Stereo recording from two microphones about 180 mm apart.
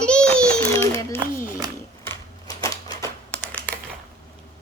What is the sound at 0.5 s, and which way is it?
Speech, 15° left (ahead or behind).